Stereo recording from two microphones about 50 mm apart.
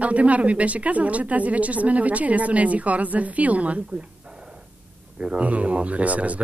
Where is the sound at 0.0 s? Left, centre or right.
Right.